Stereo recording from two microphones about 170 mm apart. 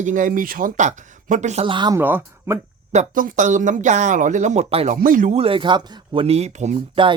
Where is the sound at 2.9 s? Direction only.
50° right (ahead or behind); by 5.0 s 35° right (ahead or behind).